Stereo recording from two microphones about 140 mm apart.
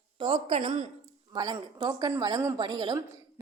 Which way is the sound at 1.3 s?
30° right (ahead or behind).